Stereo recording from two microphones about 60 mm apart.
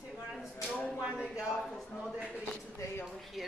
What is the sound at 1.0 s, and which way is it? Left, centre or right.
Speech, centre.